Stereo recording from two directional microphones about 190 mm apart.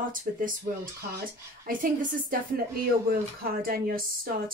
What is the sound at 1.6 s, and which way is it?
Speech, 50° right (ahead or behind).